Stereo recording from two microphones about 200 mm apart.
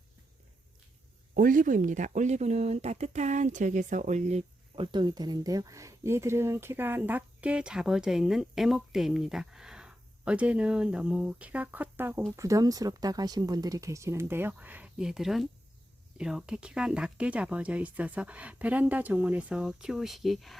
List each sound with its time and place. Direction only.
1.4 s speech: 45° right (ahead or behind); by 20.6 s centre (ahead or behind)